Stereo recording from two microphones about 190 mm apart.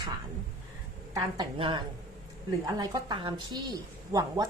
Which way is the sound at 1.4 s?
25° right (ahead or behind).